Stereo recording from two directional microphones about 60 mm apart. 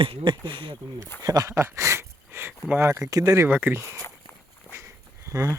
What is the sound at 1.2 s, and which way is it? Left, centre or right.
Speech, right.